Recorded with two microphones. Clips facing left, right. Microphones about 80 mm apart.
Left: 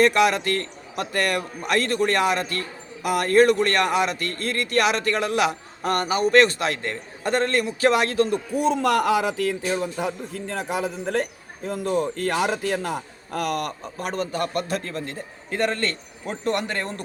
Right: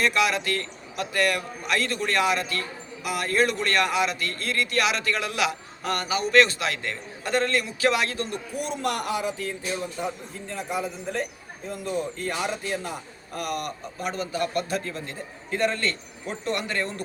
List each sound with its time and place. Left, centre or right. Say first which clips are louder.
0.0 s a man's voice: left 5 dB; left
9.2 s a man's voice: left 6 dB; left